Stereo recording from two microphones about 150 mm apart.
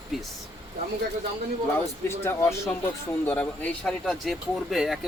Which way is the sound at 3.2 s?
10° left (ahead or behind).